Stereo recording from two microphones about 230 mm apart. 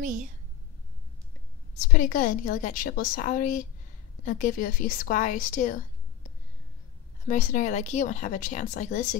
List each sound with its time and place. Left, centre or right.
0.0 s a woman's voice: right
1.8 s a woman's voice: left
7.2 s a woman's voice: left